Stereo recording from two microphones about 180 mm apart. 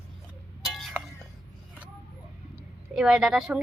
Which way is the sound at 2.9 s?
5° right (ahead or behind).